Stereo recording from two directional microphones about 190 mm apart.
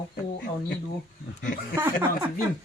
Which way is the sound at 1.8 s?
15° right (ahead or behind).